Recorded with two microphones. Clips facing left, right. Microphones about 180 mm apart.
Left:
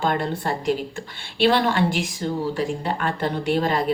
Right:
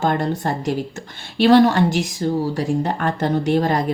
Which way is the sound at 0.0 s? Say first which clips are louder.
Right 3 dB; 45° right (ahead or behind).